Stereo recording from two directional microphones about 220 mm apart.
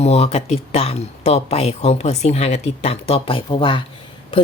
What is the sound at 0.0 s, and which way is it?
Speech, 30° left (ahead or behind).